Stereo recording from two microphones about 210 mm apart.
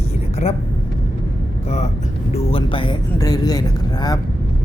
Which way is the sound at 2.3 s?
25° left (ahead or behind).